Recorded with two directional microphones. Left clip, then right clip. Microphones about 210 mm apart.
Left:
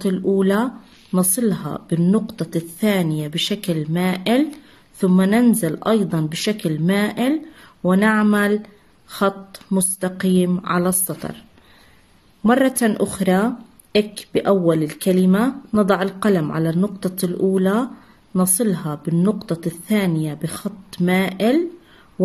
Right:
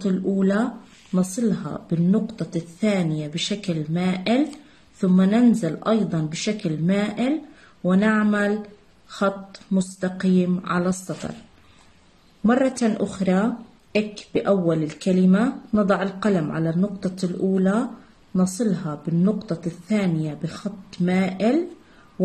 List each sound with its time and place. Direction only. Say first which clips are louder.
0.0 s a woman's voice: left 5 dB; 45° left (ahead or behind)
12.4 s a woman's voice: left 4 dB; 40° left (ahead or behind)